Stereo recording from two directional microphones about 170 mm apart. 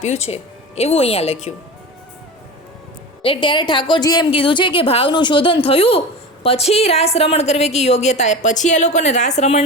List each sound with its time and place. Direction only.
0.0 s a woman's voice: 40° left (ahead or behind)
3.2 s a woman's voice: 30° left (ahead or behind)